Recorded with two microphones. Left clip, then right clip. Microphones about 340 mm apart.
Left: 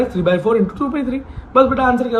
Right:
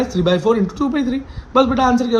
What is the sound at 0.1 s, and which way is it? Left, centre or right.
A man's voice, centre.